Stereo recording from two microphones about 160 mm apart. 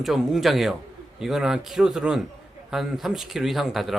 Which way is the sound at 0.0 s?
Centre (ahead or behind).